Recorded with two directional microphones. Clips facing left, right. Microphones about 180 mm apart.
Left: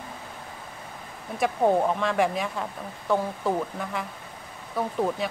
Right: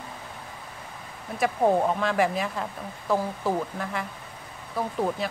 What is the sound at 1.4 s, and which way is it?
Speech, centre (ahead or behind).